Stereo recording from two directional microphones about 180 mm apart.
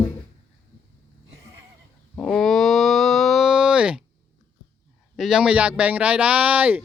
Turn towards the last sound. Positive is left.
turn(degrees=-10)  # may be behind; listen again after turning